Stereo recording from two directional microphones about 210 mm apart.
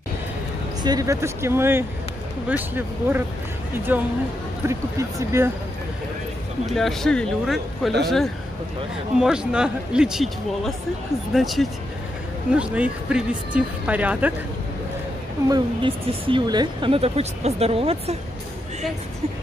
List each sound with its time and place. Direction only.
0.8 s speech: 15° right (ahead or behind)
6.6 s speech: centre (ahead or behind)
15.5 s a woman's voice: 25° right (ahead or behind)